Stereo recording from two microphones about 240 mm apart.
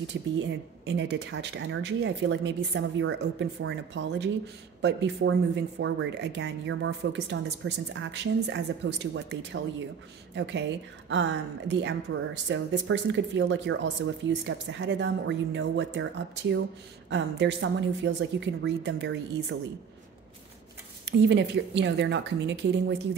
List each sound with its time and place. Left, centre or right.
0.0 s speech: right
21.0 s speech: right